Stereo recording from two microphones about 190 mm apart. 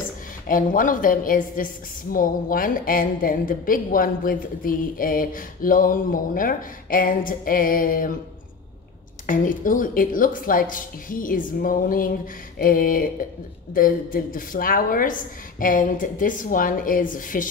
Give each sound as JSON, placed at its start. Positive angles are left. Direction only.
{"t": 0.5, "sound": "a woman's voice", "side_deg": 45}
{"t": 9.2, "sound": "a woman's voice", "side_deg": 45}